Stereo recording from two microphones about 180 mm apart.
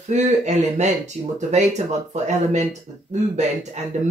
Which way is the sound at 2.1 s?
40° right (ahead or behind).